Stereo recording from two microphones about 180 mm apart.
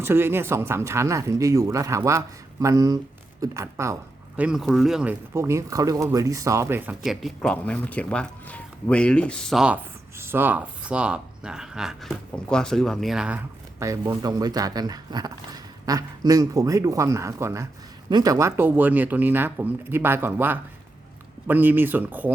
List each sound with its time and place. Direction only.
0.0 s speech: 15° right (ahead or behind)
4.4 s speech: 5° right (ahead or behind)
5.3 s speech: 15° right (ahead or behind)
13.7 s speech: 15° right (ahead or behind)